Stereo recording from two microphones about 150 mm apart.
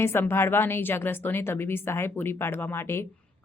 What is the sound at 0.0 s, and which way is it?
A woman's voice, 15° left (ahead or behind).